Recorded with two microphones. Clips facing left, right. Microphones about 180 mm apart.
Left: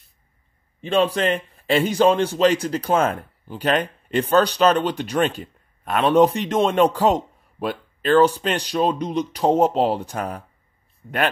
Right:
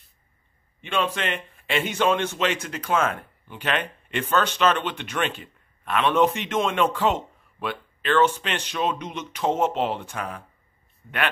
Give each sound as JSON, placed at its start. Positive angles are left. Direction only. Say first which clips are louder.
{"t": 0.7, "sound": "a man's voice", "louder": "left 7 dB", "side_deg": 35}